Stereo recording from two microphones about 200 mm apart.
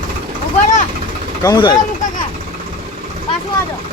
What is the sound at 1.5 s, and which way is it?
Speech, 20° left (ahead or behind).